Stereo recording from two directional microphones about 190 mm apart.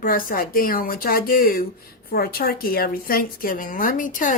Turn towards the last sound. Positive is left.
turn(degrees=45)  # may be behind; listen again after turning